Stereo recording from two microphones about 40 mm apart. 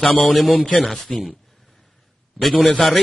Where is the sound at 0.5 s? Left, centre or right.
Left.